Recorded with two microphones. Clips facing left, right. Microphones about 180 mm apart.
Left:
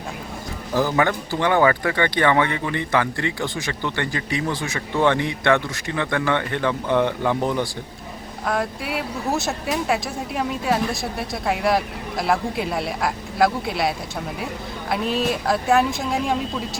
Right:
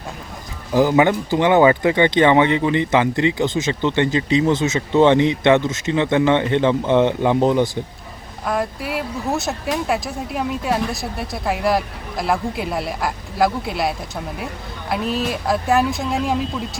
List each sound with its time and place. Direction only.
0.7 s speech: 15° right (ahead or behind)
8.4 s speech: centre (ahead or behind)